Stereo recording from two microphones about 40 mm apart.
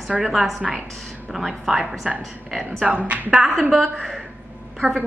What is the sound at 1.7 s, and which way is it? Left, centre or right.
Speech, centre.